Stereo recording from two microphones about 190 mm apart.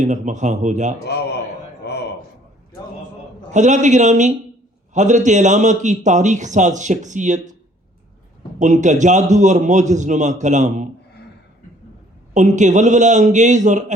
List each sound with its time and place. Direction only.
0.0 s a man's voice: 40° right (ahead or behind)
1.8 s a sound: 60° left (ahead or behind)
3.5 s a man's voice: 40° right (ahead or behind)
8.5 s a man's voice: 40° right (ahead or behind)
12.3 s a man's voice: 40° right (ahead or behind)